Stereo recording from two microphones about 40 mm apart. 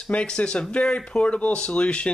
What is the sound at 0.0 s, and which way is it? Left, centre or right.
Speech, left.